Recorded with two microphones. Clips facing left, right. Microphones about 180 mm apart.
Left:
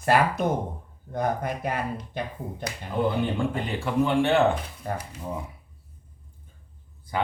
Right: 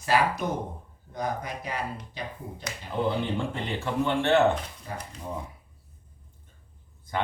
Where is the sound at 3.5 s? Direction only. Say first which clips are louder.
Left 3 dB; 10° left (ahead or behind).